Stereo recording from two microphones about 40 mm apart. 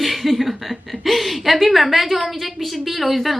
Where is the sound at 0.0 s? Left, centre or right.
Centre.